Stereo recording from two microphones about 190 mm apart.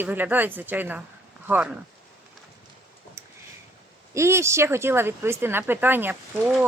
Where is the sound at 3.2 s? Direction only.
15° right (ahead or behind).